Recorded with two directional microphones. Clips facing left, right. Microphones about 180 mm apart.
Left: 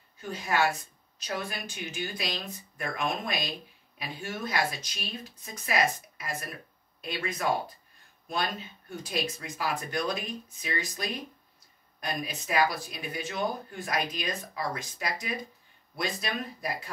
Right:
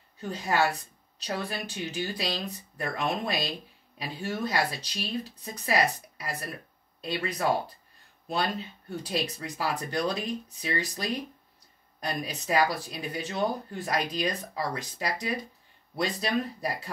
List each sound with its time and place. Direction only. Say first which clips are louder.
0.2 s speech: right 1 dB; 35° right (ahead or behind)
9.0 s speech: right 1 dB; 35° right (ahead or behind)